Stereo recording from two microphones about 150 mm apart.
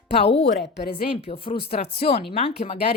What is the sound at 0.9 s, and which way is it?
A woman's voice, 40° left (ahead or behind).